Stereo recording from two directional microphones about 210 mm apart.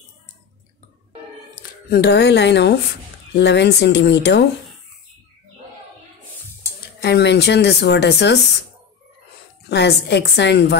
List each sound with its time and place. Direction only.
1.9 s speech: 50° left (ahead or behind)
7.0 s speech: 50° left (ahead or behind)
9.7 s speech: 55° left (ahead or behind)